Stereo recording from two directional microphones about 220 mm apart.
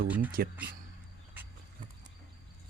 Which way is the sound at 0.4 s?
45° right (ahead or behind).